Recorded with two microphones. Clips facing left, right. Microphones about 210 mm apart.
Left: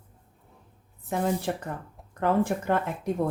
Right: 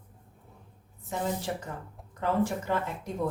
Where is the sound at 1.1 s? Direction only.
60° left (ahead or behind).